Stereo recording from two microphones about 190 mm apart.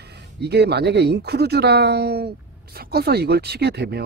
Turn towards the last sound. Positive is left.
turn(degrees=-60)  # may be behind; listen again after turning